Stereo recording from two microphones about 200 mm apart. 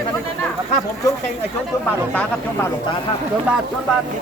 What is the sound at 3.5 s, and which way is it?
Speech, 5° right (ahead or behind).